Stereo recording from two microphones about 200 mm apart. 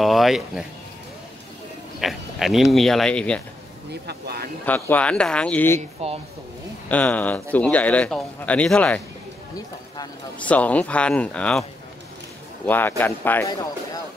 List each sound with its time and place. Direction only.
0.0 s speech: centre (ahead or behind)
2.0 s speech: centre (ahead or behind)
3.9 s speech: 55° right (ahead or behind)
4.6 s a man's voice: 10° left (ahead or behind)
5.8 s speech: 30° right (ahead or behind)
6.9 s a man's voice: 5° left (ahead or behind)
10.4 s a man's voice: 5° left (ahead or behind)
12.6 s a man's voice: 10° left (ahead or behind)